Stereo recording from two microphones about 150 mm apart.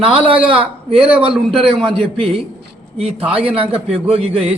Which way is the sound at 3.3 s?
40° right (ahead or behind).